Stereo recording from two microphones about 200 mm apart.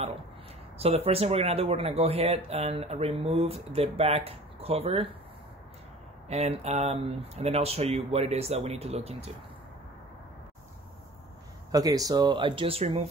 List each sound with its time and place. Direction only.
0.7 s speech: 30° right (ahead or behind)
6.2 s speech: 30° right (ahead or behind)
11.7 s speech: 20° right (ahead or behind)